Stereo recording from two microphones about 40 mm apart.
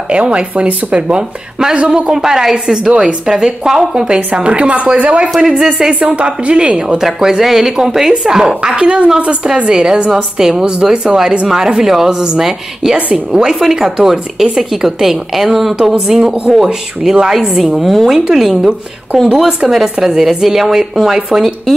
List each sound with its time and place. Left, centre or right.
0.1 s a woman's voice: right
1.1 s speech: right
2.1 s a woman's voice: centre; by 3.2 s right
3.3 s a woman's voice: centre
4.1 s a woman's voice: right
7.0 s a woman's voice: centre
8.7 s a woman's voice: right; by 15.7 s centre
16.1 s a woman's voice: centre
17.7 s a woman's voice: centre